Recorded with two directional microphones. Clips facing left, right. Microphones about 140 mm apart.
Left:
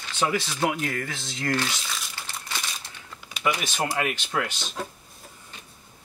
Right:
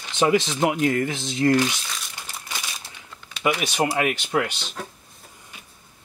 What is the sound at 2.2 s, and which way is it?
Crumpling, 10° right (ahead or behind).